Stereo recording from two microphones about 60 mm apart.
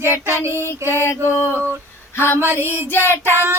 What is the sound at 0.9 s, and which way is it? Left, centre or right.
Female singing, left.